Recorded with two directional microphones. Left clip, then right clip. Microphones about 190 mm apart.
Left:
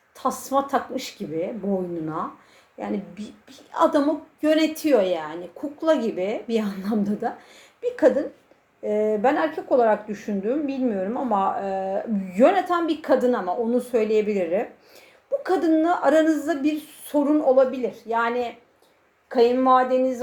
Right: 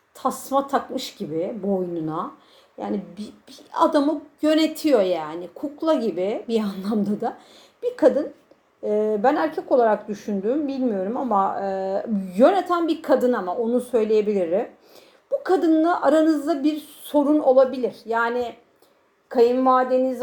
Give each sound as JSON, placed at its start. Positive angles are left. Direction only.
{"t": 0.4, "sound": "speech", "side_deg": -30}
{"t": 4.6, "sound": "a woman's voice", "side_deg": 0}
{"t": 4.9, "sound": "speech", "side_deg": -25}
{"t": 19.6, "sound": "a woman's voice", "side_deg": -5}